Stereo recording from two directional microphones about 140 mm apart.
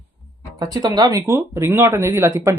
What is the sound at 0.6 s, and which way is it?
Speech, 25° right (ahead or behind).